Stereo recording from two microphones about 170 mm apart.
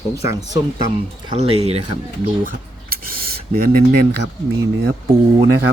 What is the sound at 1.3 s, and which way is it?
Speech, 35° right (ahead or behind).